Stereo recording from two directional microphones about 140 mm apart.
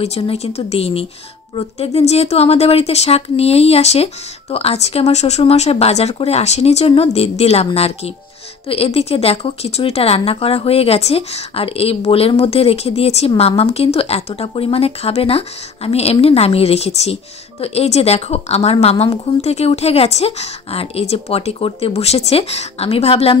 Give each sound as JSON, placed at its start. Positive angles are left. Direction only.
{"t": 0.0, "sound": "speech", "side_deg": 50}